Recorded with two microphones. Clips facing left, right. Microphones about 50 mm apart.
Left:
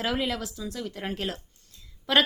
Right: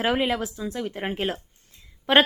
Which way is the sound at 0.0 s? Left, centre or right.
Right.